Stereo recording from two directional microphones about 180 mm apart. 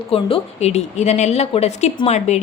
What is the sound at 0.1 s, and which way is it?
A woman's voice, 35° left (ahead or behind).